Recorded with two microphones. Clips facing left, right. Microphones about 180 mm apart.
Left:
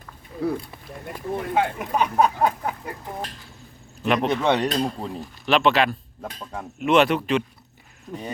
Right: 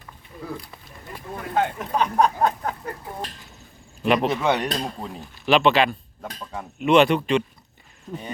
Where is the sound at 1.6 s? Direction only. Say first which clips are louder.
Right 1 dB; 10° left (ahead or behind).